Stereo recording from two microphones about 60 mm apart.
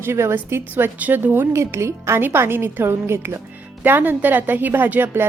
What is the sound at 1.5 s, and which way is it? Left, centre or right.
A woman's voice, right.